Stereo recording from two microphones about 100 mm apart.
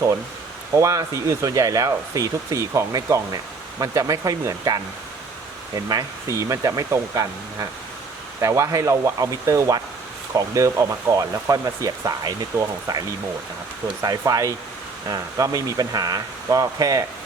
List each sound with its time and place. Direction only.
0.8 s speech: 35° right (ahead or behind)